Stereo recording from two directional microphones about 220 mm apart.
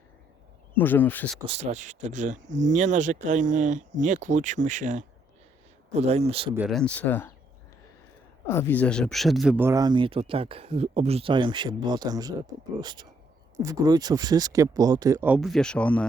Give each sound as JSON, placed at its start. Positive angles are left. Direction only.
{"t": 0.7, "sound": "speech", "side_deg": 10}
{"t": 1.5, "sound": "speech", "side_deg": -30}
{"t": 6.9, "sound": "speech", "side_deg": 10}
{"t": 8.4, "sound": "speech", "side_deg": 10}